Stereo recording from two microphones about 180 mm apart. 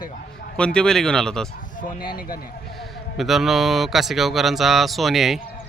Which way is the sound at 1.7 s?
50° left (ahead or behind).